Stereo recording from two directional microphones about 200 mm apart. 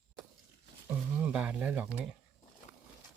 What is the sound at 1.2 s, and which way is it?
Speech, 5° right (ahead or behind).